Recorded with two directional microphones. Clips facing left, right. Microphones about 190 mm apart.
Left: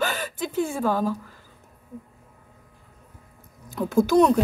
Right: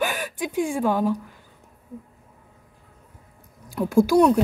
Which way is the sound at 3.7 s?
10° right (ahead or behind).